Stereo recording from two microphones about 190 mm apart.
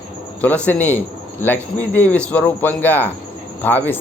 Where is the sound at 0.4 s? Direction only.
10° left (ahead or behind).